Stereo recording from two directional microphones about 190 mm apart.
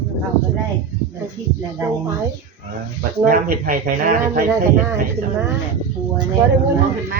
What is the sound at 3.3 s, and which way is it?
Speech, 45° right (ahead or behind).